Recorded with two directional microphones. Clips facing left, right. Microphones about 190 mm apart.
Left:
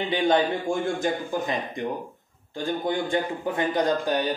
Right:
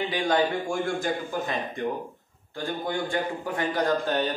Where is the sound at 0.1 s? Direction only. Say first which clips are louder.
Left 4 dB; 25° left (ahead or behind).